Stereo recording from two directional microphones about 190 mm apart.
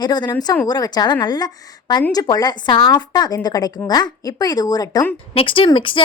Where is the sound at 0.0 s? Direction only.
20° left (ahead or behind).